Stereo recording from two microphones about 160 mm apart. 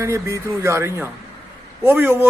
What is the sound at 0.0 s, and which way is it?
Speech, 20° right (ahead or behind).